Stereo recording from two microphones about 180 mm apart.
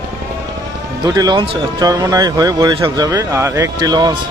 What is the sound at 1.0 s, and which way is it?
Speech, 20° right (ahead or behind).